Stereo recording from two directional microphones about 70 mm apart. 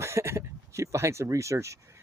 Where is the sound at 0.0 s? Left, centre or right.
Right.